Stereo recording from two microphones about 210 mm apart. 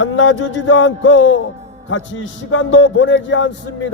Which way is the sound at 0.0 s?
65° left (ahead or behind).